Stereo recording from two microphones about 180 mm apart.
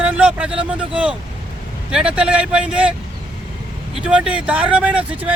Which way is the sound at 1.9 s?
5° right (ahead or behind).